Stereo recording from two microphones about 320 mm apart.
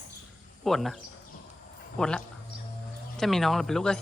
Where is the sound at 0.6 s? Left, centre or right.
Centre.